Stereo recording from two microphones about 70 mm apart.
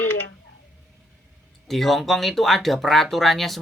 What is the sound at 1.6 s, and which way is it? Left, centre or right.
Speech, centre.